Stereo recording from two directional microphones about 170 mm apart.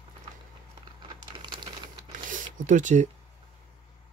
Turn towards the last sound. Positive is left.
turn(degrees=-45)  # may be behind; listen again after turning